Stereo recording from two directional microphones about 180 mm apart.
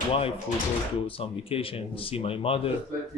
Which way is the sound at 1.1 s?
30° left (ahead or behind).